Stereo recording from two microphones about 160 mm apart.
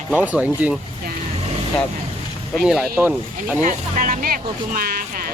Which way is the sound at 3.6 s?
55° right (ahead or behind).